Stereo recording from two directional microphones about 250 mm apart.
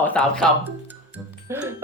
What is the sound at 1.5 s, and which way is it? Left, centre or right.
Speech, centre.